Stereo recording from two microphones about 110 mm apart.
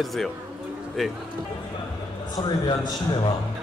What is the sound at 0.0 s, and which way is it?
Speech, centre (ahead or behind).